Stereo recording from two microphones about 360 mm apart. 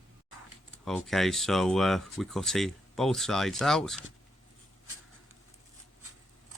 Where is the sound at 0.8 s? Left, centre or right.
Centre.